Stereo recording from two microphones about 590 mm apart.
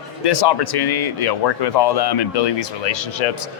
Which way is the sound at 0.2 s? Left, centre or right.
Left.